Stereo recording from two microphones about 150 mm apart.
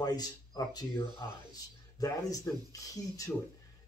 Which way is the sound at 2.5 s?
20° left (ahead or behind).